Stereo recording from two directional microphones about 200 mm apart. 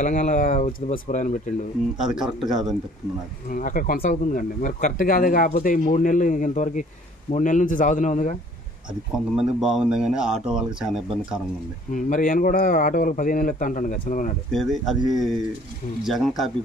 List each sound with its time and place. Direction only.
0.0 s speech: 40° left (ahead or behind)
2.0 s speech: 5° right (ahead or behind)
3.4 s speech: 45° left (ahead or behind)
9.1 s speech: 5° right (ahead or behind)
11.9 s speech: 40° left (ahead or behind)
14.5 s speech: centre (ahead or behind)